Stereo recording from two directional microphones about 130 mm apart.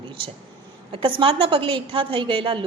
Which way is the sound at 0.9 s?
45° right (ahead or behind).